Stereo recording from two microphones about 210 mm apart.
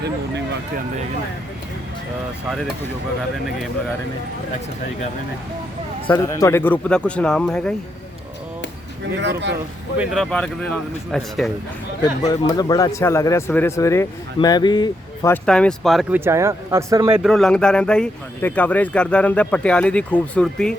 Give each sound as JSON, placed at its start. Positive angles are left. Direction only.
{"t": 6.1, "sound": "speech", "side_deg": 15}
{"t": 10.0, "sound": "speech", "side_deg": 0}
{"t": 12.3, "sound": "speech", "side_deg": 20}
{"t": 15.4, "sound": "speech", "side_deg": 5}
{"t": 17.2, "sound": "speech", "side_deg": 0}